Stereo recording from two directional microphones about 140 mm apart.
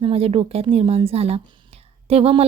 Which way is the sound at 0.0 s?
45° right (ahead or behind).